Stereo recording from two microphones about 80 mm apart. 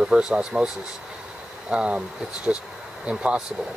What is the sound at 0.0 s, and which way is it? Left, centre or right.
Speech, centre.